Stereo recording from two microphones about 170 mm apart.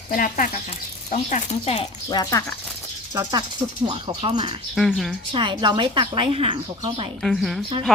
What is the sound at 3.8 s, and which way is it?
Speech, 35° right (ahead or behind).